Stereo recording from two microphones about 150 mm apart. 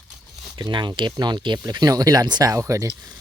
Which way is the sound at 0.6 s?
30° right (ahead or behind).